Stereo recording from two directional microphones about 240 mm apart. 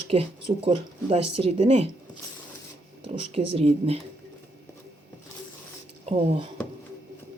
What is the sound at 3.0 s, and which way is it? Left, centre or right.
Speech, right.